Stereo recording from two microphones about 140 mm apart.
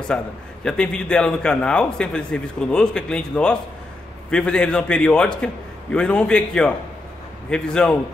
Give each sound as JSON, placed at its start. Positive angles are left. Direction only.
{"t": 0.1, "sound": "a man's voice", "side_deg": 5}